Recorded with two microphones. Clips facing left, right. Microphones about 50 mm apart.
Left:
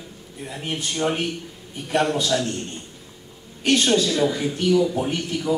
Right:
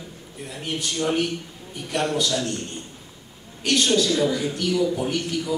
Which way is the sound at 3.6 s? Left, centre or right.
Left.